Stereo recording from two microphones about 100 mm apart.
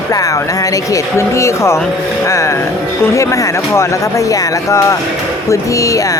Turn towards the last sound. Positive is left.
turn(degrees=35)  # may be behind; listen again after turning